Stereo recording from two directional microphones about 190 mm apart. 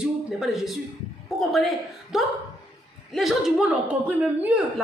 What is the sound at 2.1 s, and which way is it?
A woman's voice, centre (ahead or behind).